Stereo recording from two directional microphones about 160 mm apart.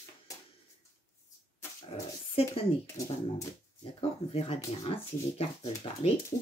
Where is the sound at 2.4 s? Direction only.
40° left (ahead or behind).